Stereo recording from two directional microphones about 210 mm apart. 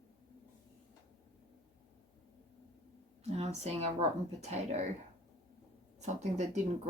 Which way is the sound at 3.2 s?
30° right (ahead or behind).